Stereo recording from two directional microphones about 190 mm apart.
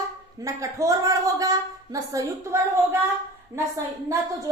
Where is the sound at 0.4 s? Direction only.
15° right (ahead or behind).